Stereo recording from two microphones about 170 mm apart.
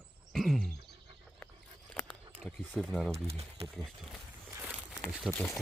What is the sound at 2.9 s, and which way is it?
Speech, centre (ahead or behind).